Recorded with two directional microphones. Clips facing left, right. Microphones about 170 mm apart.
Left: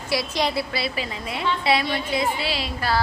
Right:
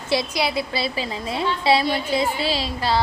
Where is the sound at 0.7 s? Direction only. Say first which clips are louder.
Right 2 dB; 30° right (ahead or behind).